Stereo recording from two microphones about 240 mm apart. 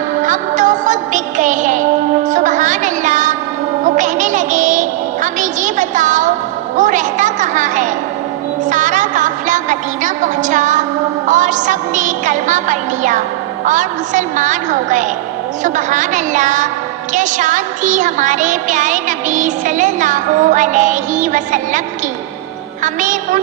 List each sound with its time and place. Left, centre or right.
0.2 s music: right
22.8 s a woman's voice: right